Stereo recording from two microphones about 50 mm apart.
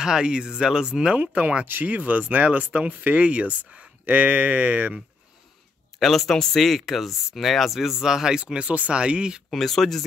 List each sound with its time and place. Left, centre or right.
0.0 s speech: centre
5.9 s speech: centre
9.5 s speech: centre